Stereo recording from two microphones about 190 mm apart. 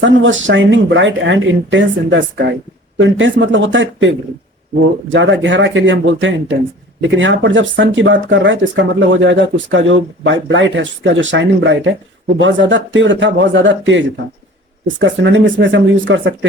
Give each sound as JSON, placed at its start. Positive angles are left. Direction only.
{"t": 0.0, "sound": "speech", "side_deg": -80}
{"t": 3.0, "sound": "speech", "side_deg": -85}
{"t": 5.1, "sound": "speech", "side_deg": -75}